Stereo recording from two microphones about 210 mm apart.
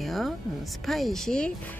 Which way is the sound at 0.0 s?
Centre (ahead or behind).